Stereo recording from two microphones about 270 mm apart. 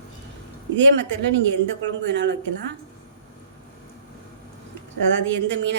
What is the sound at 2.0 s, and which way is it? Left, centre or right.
Speech, right.